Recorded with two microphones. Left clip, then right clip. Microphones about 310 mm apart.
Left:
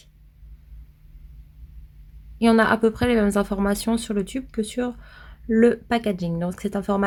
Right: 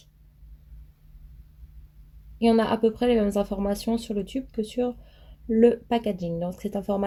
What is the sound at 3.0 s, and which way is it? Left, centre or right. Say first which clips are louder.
Speech: left 2 dB; left.